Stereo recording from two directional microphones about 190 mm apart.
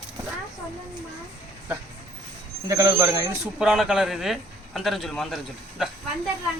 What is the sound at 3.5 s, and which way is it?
Speech, centre (ahead or behind).